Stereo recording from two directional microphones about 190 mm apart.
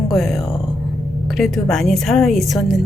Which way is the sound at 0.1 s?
Centre (ahead or behind).